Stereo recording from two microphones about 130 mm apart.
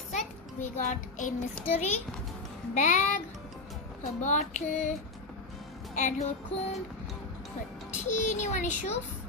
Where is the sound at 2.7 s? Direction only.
70° left (ahead or behind).